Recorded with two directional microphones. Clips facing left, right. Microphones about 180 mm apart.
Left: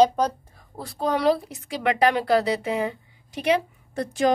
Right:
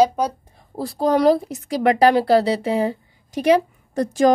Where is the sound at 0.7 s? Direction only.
35° right (ahead or behind).